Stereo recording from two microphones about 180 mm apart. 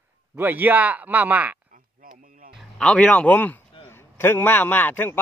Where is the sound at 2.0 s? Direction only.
50° right (ahead or behind).